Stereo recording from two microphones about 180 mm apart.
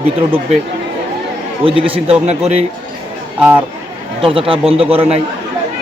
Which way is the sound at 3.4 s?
10° right (ahead or behind).